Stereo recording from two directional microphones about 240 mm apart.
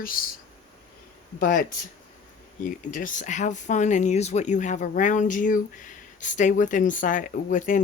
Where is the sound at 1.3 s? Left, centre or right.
Left.